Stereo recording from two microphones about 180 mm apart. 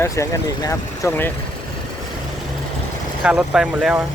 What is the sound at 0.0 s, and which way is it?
Speech, 20° left (ahead or behind).